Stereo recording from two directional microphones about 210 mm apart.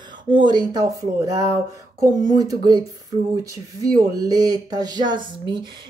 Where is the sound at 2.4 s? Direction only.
20° right (ahead or behind).